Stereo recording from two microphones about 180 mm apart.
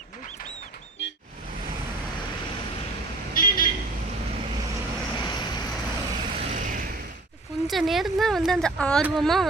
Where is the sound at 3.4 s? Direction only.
50° left (ahead or behind).